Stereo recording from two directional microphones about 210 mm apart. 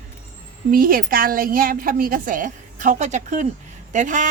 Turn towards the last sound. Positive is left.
turn(degrees=-35)  # may be behind; listen again after turning